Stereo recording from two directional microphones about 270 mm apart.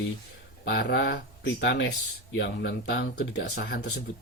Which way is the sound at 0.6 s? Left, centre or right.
Left.